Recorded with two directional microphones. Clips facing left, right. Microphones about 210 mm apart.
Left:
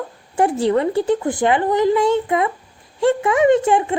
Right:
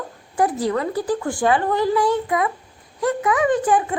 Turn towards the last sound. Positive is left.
turn(degrees=25)  # may be behind; listen again after turning